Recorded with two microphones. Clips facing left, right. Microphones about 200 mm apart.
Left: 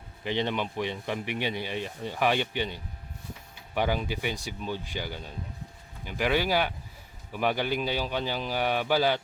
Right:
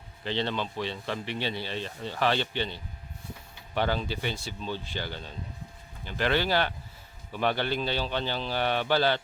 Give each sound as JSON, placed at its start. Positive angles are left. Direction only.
{"t": 0.3, "sound": "speech", "side_deg": 15}